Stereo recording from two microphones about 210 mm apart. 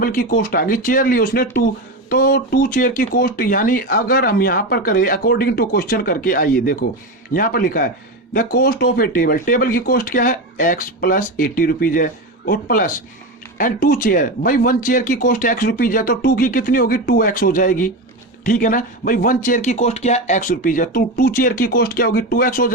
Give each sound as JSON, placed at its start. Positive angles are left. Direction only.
{"t": 0.0, "sound": "speech", "side_deg": 40}